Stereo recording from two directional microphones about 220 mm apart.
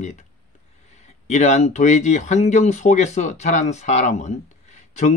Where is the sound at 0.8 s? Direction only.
30° left (ahead or behind).